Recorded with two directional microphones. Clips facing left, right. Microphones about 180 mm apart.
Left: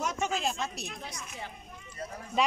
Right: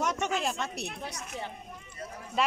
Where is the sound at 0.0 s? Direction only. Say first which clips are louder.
Right 1 dB; 65° right (ahead or behind).